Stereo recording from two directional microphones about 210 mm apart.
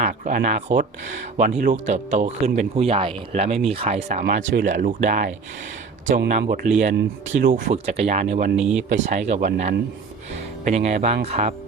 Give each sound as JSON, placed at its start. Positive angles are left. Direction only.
{"t": 0.0, "sound": "speech", "side_deg": -40}
{"t": 4.2, "sound": "speech", "side_deg": -40}
{"t": 8.5, "sound": "speech", "side_deg": -5}
{"t": 8.9, "sound": "speech", "side_deg": -35}